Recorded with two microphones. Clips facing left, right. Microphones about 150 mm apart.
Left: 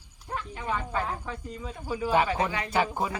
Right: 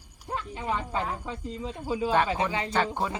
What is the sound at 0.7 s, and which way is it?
Speech, 20° right (ahead or behind).